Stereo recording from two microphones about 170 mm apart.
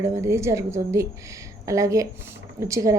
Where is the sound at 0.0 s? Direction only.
15° right (ahead or behind).